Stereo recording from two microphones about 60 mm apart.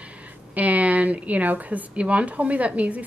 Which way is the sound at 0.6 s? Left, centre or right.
Right.